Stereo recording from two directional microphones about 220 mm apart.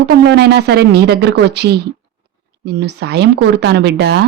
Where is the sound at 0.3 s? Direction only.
50° right (ahead or behind).